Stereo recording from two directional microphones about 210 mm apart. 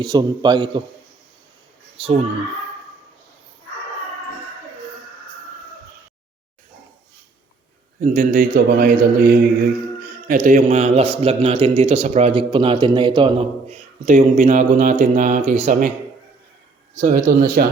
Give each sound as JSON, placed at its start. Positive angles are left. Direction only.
{"t": 0.0, "sound": "a man's voice", "side_deg": -20}
{"t": 8.0, "sound": "a man's voice", "side_deg": -40}
{"t": 14.0, "sound": "speech", "side_deg": -35}
{"t": 16.9, "sound": "speech", "side_deg": -35}